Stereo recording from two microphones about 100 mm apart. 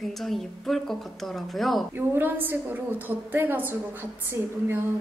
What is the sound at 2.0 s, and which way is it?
A woman's voice, 20° right (ahead or behind).